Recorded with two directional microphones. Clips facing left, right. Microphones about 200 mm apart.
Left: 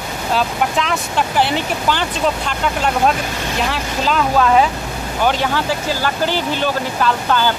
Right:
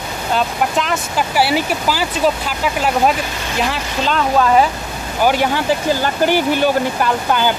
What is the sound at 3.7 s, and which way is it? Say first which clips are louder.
Speech: even; centre (ahead or behind).